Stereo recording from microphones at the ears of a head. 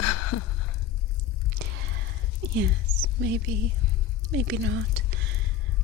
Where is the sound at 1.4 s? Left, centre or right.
Right.